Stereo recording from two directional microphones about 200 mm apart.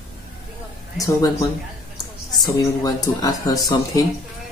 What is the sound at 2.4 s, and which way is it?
Speech, 20° left (ahead or behind).